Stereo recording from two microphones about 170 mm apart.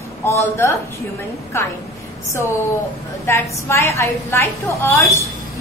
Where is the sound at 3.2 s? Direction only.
15° left (ahead or behind).